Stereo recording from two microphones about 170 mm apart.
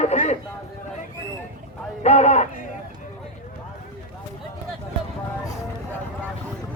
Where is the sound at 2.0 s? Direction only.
40° left (ahead or behind).